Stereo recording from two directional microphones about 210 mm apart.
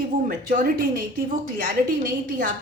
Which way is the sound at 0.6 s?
40° right (ahead or behind).